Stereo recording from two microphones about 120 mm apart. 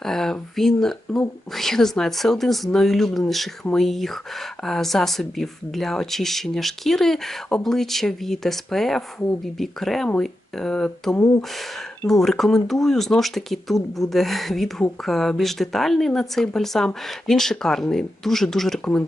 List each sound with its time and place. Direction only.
0.0 s speech: 5° left (ahead or behind)
11.1 s speech: 20° left (ahead or behind)
12.2 s speech: 5° left (ahead or behind)